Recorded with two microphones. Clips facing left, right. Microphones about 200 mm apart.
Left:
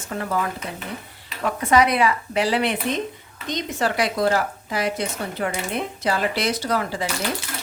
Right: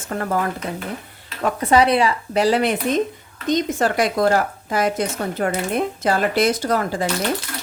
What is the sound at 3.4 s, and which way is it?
Speech, 45° right (ahead or behind).